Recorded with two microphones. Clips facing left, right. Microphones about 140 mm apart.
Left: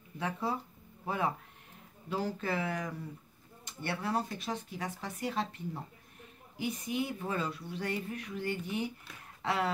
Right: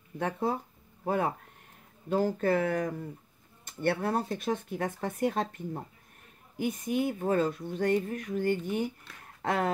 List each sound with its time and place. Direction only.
0.2 s speech: 50° right (ahead or behind)